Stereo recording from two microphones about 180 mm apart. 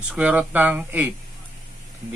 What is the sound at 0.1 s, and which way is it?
Speech, 5° right (ahead or behind).